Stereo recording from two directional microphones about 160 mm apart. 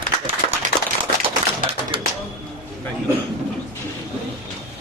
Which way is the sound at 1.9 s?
30° right (ahead or behind).